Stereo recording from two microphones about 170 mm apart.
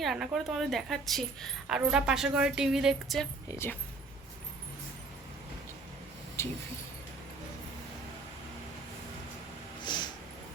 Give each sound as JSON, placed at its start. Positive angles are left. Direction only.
{"t": 0.0, "sound": "speech", "side_deg": 0}
{"t": 3.5, "sound": "speech", "side_deg": 15}
{"t": 6.4, "sound": "speech", "side_deg": 15}
{"t": 9.8, "sound": "snort", "side_deg": 25}